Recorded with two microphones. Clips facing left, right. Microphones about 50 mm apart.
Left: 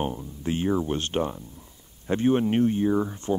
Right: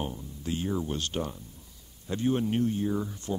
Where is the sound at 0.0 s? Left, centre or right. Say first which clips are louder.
Left 6 dB; left.